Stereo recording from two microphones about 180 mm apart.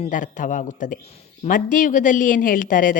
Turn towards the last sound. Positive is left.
turn(degrees=50)  # may be behind; listen again after turning